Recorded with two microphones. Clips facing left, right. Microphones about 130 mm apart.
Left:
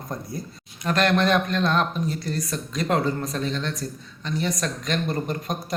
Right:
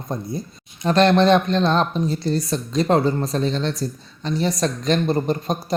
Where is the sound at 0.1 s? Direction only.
25° right (ahead or behind).